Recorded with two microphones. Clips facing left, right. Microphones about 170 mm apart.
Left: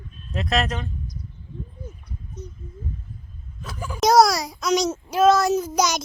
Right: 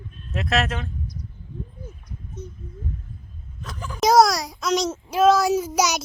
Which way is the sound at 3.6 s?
10° left (ahead or behind).